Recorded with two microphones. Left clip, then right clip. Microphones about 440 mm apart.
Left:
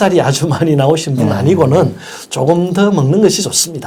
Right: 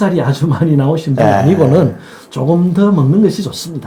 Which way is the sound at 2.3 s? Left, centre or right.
Left.